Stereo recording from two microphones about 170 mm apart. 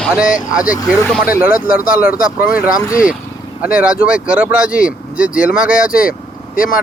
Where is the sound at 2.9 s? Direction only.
5° right (ahead or behind).